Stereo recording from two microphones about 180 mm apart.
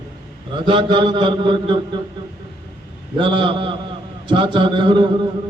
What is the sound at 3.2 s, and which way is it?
Mantra, 25° right (ahead or behind).